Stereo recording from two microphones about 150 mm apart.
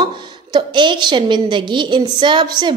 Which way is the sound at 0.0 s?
30° right (ahead or behind).